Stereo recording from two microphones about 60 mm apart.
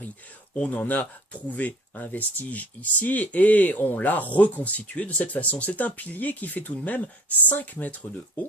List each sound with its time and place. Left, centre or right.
0.5 s speech: centre